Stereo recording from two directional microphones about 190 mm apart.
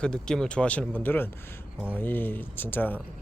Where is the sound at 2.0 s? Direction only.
10° left (ahead or behind).